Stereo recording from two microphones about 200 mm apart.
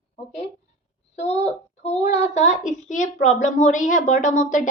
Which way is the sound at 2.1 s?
35° left (ahead or behind).